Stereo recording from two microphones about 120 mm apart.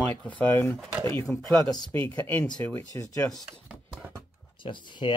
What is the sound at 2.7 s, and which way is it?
Speech, 20° left (ahead or behind).